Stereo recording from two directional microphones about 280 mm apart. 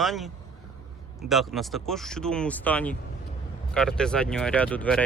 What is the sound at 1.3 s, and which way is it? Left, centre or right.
Speech, centre.